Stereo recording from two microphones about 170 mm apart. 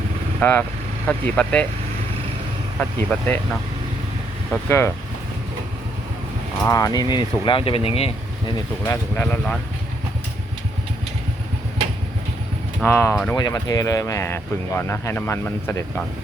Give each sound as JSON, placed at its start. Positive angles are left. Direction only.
{"t": 0.3, "sound": "speech", "side_deg": 10}
{"t": 2.7, "sound": "speech", "side_deg": 5}
{"t": 4.7, "sound": "speech", "side_deg": 15}
{"t": 6.7, "sound": "speech", "side_deg": 20}
{"t": 8.8, "sound": "speech", "side_deg": 10}
{"t": 12.8, "sound": "speech", "side_deg": 15}
{"t": 13.3, "sound": "speech", "side_deg": 25}